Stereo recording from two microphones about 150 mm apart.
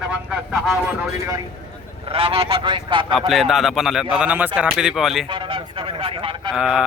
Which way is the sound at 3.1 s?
Centre (ahead or behind).